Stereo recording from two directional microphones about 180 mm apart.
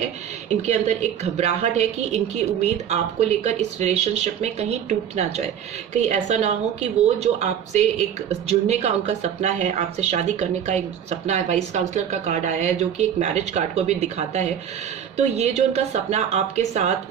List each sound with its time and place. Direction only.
0.5 s a woman's voice: 40° right (ahead or behind)